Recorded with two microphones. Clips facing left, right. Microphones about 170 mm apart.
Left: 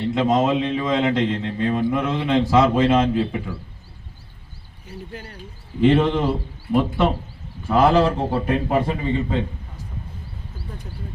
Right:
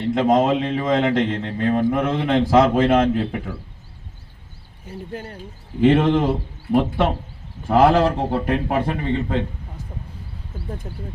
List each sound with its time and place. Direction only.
0.1 s a man's voice: 50° right (ahead or behind)
4.9 s a man's voice: 50° right (ahead or behind)
7.7 s a man's voice: 55° right (ahead or behind)
10.8 s a man's voice: 50° right (ahead or behind)